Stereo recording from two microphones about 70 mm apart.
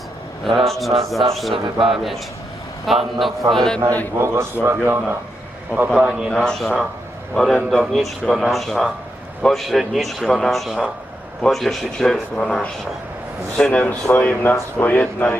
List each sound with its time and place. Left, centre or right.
0.4 s a man's voice: centre
4.2 s a man's voice: right
5.9 s a man's voice: centre
6.3 s a man's voice: centre
13.6 s speech: centre